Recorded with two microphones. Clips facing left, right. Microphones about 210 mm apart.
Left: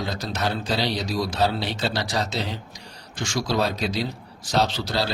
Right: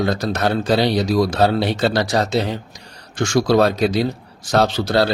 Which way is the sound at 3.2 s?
65° right (ahead or behind).